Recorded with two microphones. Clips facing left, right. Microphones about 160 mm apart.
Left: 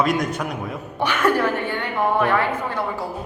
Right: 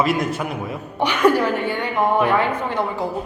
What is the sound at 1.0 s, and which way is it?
A woman's voice, 15° right (ahead or behind).